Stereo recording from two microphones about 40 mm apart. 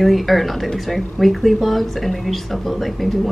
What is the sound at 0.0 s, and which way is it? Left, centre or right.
Speech, centre.